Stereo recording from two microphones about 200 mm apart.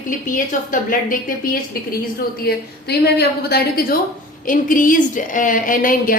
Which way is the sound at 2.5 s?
55° left (ahead or behind).